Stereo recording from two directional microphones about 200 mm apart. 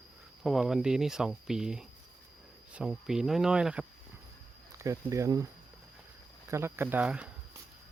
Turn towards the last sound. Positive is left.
turn(degrees=-5)  # may be behind; listen again after turning